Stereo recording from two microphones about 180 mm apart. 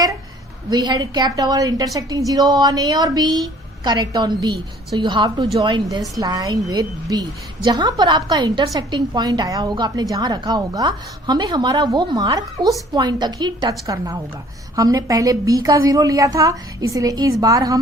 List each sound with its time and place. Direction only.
0.7 s a woman's voice: 20° right (ahead or behind)